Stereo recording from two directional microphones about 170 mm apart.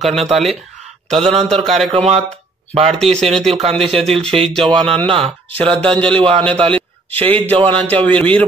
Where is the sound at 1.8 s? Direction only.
30° right (ahead or behind).